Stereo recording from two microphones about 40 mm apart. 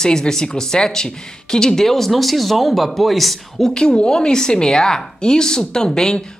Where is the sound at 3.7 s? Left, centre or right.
Centre.